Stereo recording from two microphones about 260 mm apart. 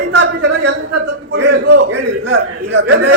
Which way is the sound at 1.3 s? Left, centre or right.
Right.